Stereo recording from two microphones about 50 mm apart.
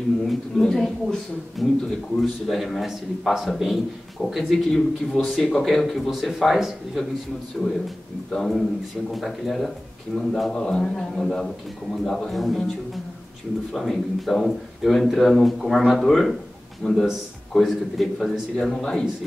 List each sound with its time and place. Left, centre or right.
0.6 s a man's voice: centre
16.8 s a man's voice: centre
17.5 s a man's voice: centre